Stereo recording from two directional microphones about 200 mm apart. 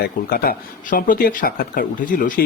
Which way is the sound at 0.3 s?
45° left (ahead or behind).